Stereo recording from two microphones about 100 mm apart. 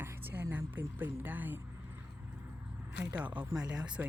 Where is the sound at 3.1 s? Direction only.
15° right (ahead or behind).